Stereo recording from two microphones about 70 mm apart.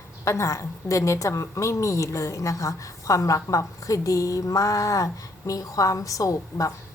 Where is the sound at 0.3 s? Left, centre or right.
Left.